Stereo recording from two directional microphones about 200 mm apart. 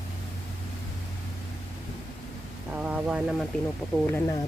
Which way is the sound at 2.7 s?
5° right (ahead or behind).